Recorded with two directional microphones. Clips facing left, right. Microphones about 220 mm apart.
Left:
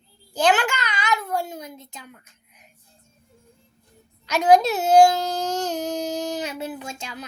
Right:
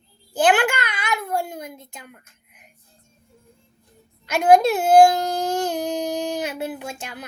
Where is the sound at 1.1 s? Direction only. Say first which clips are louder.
Even; 10° right (ahead or behind).